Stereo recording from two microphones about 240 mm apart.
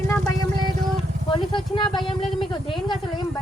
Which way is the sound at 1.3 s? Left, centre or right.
Centre.